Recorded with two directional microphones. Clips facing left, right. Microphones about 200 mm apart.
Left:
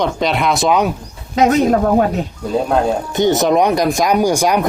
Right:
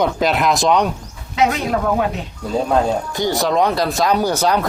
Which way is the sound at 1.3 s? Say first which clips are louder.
Left 6 dB; 45° left (ahead or behind).